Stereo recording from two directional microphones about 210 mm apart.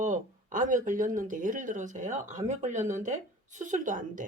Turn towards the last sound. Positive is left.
turn(degrees=-40)  # may be behind; listen again after turning